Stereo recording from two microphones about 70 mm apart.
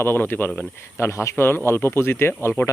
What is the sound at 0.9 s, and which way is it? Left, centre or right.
Speech, left.